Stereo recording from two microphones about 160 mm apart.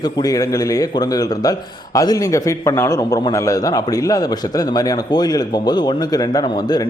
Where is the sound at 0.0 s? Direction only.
25° left (ahead or behind).